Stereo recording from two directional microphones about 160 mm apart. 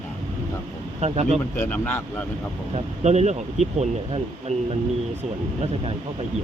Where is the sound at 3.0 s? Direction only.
45° right (ahead or behind).